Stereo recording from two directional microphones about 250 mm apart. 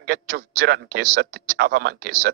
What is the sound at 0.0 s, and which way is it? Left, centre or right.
A man's voice, right.